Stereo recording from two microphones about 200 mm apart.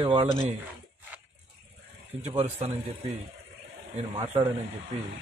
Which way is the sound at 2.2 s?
35° right (ahead or behind).